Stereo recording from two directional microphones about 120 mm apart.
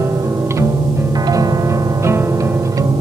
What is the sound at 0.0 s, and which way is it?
Music, 25° right (ahead or behind).